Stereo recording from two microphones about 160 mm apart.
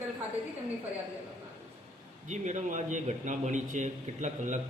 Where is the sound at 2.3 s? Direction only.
50° right (ahead or behind).